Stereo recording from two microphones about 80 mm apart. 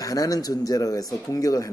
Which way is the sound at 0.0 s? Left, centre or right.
Left.